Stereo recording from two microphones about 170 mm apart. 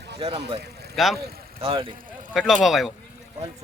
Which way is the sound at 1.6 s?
30° right (ahead or behind).